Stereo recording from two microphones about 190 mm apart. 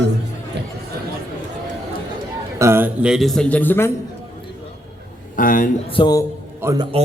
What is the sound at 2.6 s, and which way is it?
A man's voice, 15° right (ahead or behind).